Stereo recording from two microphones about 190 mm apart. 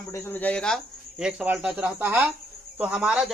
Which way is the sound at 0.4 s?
5° left (ahead or behind).